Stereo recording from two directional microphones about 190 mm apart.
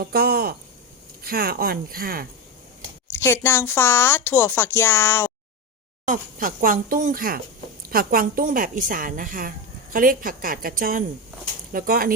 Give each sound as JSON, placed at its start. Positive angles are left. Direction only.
{"t": 0.0, "sound": "a woman's voice", "side_deg": -55}
{"t": 3.1, "sound": "speech", "side_deg": 10}
{"t": 6.1, "sound": "a woman's voice", "side_deg": -45}